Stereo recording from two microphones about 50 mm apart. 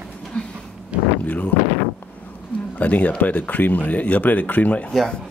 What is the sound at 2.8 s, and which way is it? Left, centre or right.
Speech, left.